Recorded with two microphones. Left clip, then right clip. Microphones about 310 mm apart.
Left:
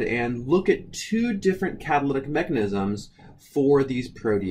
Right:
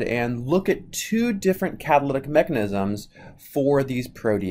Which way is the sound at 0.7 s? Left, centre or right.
Centre.